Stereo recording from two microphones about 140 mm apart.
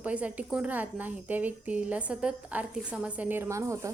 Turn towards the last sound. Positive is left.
turn(degrees=-20)  # may be behind; listen again after turning